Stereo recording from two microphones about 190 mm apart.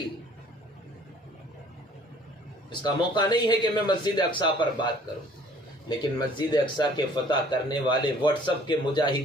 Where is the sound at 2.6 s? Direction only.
25° left (ahead or behind).